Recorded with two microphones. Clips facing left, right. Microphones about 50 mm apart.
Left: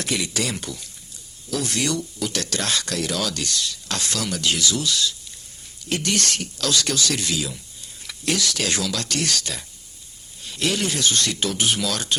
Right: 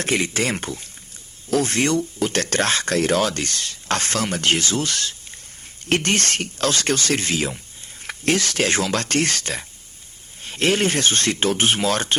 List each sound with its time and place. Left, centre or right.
0.0 s speech: right